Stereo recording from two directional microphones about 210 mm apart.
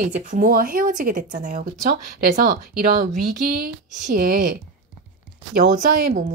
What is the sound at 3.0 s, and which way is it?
Speech, 45° right (ahead or behind).